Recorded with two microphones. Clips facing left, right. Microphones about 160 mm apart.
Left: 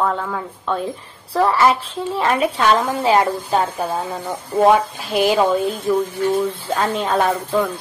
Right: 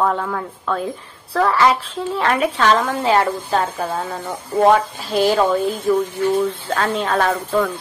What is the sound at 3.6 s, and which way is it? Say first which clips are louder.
A woman's voice: left 1 dB; centre (ahead or behind).